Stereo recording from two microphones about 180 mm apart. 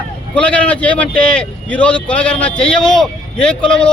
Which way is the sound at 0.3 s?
5° left (ahead or behind).